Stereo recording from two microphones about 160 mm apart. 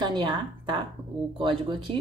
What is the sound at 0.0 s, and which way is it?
A woman's voice, 30° right (ahead or behind).